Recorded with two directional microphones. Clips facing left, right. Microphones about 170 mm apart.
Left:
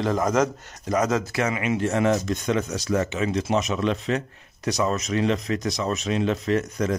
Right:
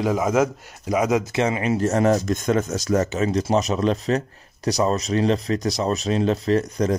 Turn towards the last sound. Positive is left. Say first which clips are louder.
# right 3 dB
turn(degrees=-35)  # may be behind; listen again after turning